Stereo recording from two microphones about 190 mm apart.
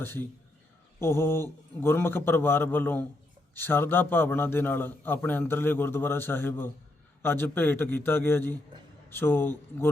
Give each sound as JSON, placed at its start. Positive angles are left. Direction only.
{"t": 0.0, "sound": "a man's voice", "side_deg": 10}